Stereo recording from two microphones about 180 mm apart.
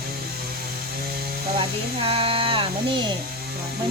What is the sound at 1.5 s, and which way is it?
Speech, 30° right (ahead or behind).